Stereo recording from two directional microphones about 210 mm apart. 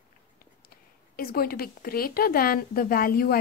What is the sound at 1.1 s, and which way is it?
A woman's voice, 45° left (ahead or behind).